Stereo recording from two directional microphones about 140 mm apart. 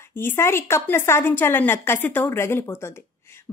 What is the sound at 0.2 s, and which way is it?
A woman's voice, 15° left (ahead or behind).